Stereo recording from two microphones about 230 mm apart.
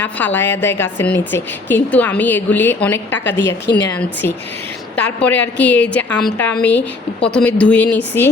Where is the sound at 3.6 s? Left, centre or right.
Left.